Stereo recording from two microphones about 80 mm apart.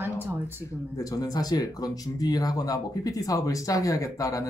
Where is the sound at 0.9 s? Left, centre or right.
Left.